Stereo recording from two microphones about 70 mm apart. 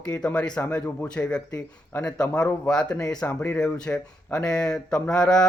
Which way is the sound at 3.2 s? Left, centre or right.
Left.